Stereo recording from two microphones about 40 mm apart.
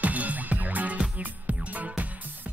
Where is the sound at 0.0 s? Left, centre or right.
Right.